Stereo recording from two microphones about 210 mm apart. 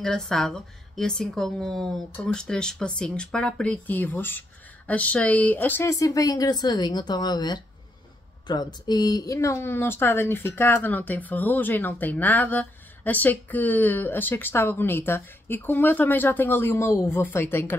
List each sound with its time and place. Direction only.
0.0 s a woman's voice: centre (ahead or behind)